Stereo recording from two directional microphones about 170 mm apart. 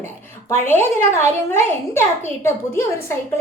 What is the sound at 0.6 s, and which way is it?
Speech, 15° left (ahead or behind).